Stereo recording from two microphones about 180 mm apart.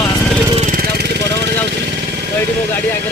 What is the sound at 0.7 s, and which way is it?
Vehicle, 60° right (ahead or behind).